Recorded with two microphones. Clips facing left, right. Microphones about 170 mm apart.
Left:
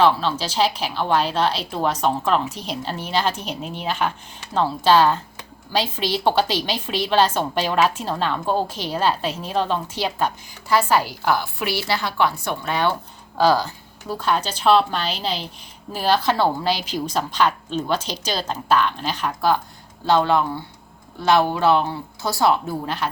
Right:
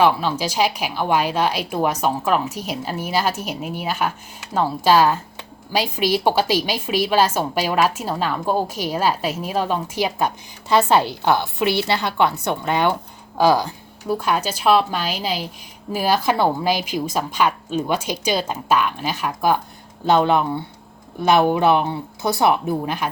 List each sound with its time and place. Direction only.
0.0 s a woman's voice: 10° right (ahead or behind)